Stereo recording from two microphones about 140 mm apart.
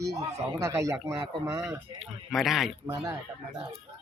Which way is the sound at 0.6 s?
25° right (ahead or behind).